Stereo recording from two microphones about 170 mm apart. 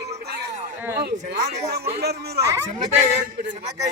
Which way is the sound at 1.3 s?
75° right (ahead or behind).